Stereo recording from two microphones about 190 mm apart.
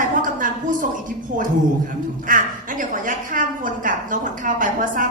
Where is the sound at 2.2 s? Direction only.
45° right (ahead or behind).